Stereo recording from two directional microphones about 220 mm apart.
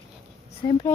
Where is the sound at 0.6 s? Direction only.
15° left (ahead or behind).